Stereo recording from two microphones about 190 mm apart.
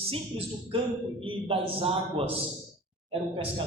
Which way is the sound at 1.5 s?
30° right (ahead or behind).